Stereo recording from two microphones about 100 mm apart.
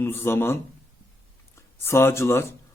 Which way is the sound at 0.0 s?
25° left (ahead or behind).